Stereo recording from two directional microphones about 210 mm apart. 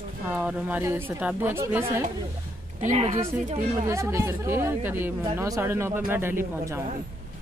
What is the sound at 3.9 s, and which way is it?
Speech, 15° right (ahead or behind).